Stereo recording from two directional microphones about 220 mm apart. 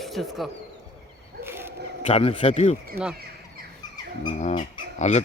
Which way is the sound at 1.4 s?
10° right (ahead or behind).